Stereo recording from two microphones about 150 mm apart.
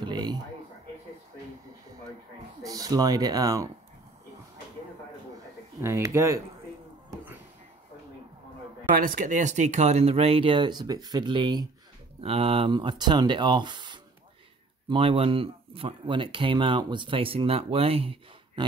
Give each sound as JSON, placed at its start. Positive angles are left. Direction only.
{"t": 0.0, "sound": "a sound", "side_deg": -30}
{"t": 2.6, "sound": "speech", "side_deg": -25}
{"t": 5.8, "sound": "speech", "side_deg": -20}
{"t": 8.9, "sound": "speech", "side_deg": -65}